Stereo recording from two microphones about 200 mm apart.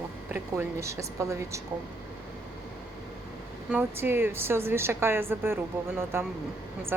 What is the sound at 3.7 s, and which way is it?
A woman's voice, 10° right (ahead or behind).